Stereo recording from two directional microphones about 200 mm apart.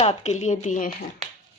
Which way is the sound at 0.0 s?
35° left (ahead or behind).